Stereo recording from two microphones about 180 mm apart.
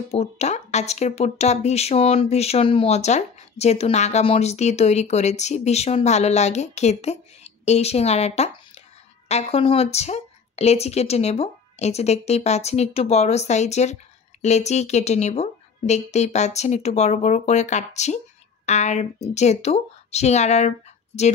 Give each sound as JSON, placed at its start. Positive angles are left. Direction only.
{"t": 0.1, "sound": "speech", "side_deg": 35}